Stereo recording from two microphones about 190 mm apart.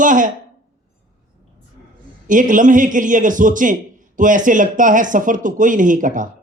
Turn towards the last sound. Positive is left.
turn(degrees=-45)  # may be behind; listen again after turning